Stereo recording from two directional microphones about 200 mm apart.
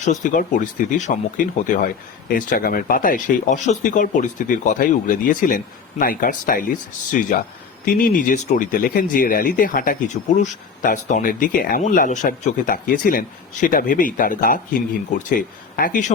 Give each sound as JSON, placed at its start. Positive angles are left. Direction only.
{"t": 0.0, "sound": "speech", "side_deg": 40}